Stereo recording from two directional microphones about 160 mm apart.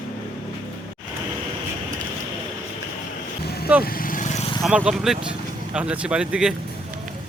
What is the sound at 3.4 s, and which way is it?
Vehicle, 75° left (ahead or behind).